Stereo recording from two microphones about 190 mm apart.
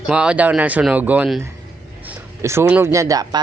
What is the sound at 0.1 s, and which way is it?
Speech, 5° right (ahead or behind).